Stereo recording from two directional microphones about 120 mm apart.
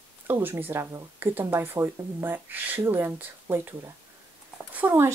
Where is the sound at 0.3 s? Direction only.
15° right (ahead or behind).